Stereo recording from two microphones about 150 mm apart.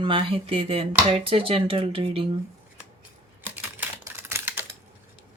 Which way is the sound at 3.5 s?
15° right (ahead or behind).